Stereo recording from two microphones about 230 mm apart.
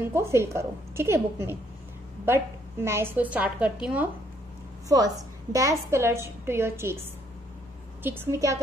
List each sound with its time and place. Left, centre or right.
0.1 s a woman's voice: centre
8.0 s a woman's voice: centre